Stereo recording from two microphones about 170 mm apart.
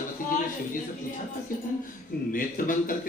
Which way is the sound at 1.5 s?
55° left (ahead or behind).